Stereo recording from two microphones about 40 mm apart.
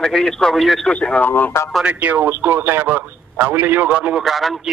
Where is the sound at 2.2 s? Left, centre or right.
Right.